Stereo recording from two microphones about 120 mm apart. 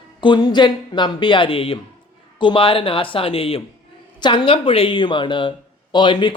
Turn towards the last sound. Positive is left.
turn(degrees=40)  # may be behind; listen again after turning